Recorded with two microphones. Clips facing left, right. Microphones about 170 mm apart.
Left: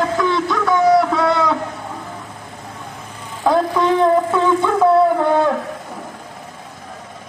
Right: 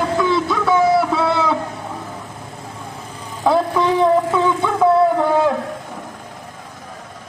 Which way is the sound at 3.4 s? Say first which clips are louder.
Even; centre (ahead or behind).